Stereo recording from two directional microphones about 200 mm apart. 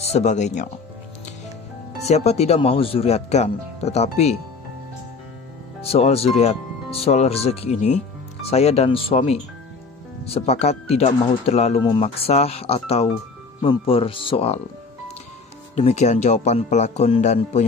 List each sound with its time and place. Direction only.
0.0 s speech: 35° left (ahead or behind)
2.0 s speech: 30° left (ahead or behind)
5.8 s speech: 30° left (ahead or behind)
15.7 s speech: 35° left (ahead or behind)